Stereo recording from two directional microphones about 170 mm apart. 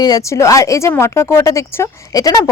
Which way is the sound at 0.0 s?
20° left (ahead or behind).